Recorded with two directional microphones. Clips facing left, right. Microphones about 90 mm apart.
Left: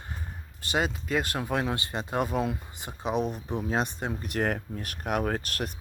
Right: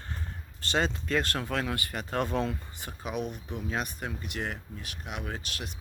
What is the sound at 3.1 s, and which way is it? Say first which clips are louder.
Speech: left 6 dB; 35° left (ahead or behind).